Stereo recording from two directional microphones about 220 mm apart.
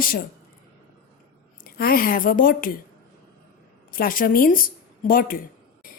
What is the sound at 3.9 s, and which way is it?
Speech, 40° left (ahead or behind).